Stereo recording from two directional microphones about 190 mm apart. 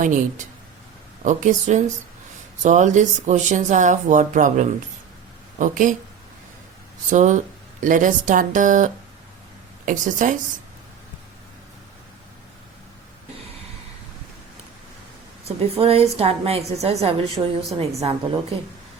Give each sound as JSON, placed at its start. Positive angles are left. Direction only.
{"t": 0.0, "sound": "speech", "side_deg": -45}
{"t": 7.1, "sound": "speech", "side_deg": -40}
{"t": 15.4, "sound": "speech", "side_deg": -30}